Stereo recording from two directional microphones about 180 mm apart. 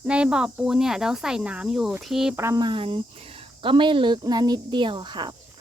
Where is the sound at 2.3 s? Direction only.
15° right (ahead or behind).